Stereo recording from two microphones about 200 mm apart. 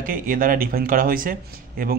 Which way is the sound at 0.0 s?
45° right (ahead or behind).